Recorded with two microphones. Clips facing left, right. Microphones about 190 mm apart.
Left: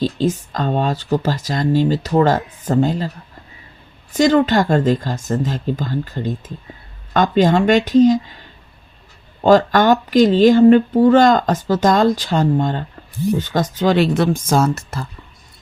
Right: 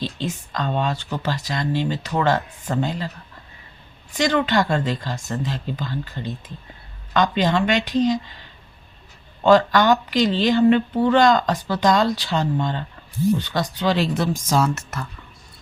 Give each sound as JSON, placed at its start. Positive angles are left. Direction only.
{"t": 0.0, "sound": "speech", "side_deg": 40}
{"t": 4.1, "sound": "speech", "side_deg": 45}
{"t": 9.4, "sound": "speech", "side_deg": 45}
{"t": 14.8, "sound": "speech", "side_deg": 30}